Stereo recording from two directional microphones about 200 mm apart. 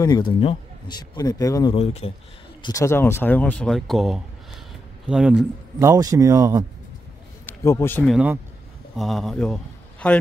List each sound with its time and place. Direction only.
0.0 s speech: 20° left (ahead or behind)
1.8 s speech: 30° left (ahead or behind)
2.6 s speech: 15° left (ahead or behind); by 5.5 s 5° right (ahead or behind)
5.8 s speech: 15° right (ahead or behind)
7.4 s speech: 15° left (ahead or behind)
8.0 s a man's voice: 5° right (ahead or behind)